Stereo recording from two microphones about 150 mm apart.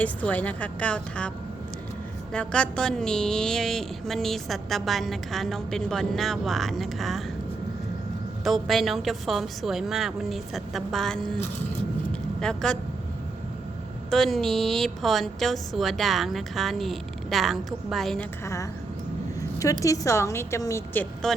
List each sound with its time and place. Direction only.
0.0 s a woman's voice: 10° left (ahead or behind)
2.3 s speech: 5° left (ahead or behind)
8.4 s speech: centre (ahead or behind)
12.4 s speech: 5° left (ahead or behind)
14.1 s speech: centre (ahead or behind)
18.4 s a woman's voice: 20° left (ahead or behind)
19.4 s a sound: 20° left (ahead or behind)
19.8 s a woman's voice: 20° left (ahead or behind)